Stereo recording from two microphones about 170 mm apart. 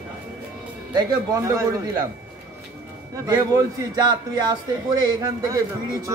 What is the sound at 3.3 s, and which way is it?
Speech, 20° right (ahead or behind).